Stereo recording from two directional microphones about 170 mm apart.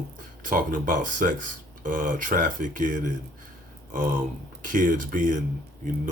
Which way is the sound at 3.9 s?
50° right (ahead or behind).